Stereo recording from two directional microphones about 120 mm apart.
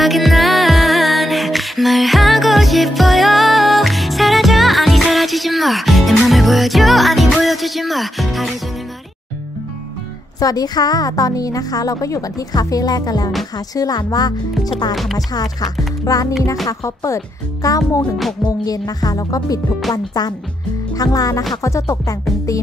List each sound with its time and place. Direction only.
0.0 s music: centre (ahead or behind)
10.4 s speech: 30° left (ahead or behind)